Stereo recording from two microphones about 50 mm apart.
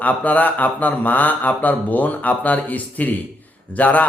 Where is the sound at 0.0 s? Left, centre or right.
Left.